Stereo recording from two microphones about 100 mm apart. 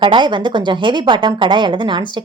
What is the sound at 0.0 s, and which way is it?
A woman's voice, 55° right (ahead or behind).